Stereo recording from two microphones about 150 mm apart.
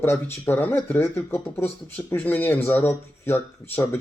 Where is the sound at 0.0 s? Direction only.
15° left (ahead or behind).